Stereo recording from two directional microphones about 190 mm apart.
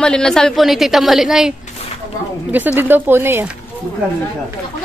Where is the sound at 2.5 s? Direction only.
10° right (ahead or behind).